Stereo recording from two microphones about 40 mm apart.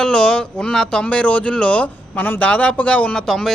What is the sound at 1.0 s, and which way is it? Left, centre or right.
A man's voice, left.